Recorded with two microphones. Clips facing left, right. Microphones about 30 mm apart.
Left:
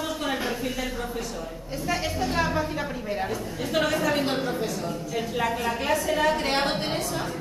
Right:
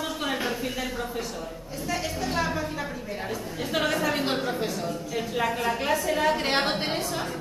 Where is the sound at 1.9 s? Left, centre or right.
Centre.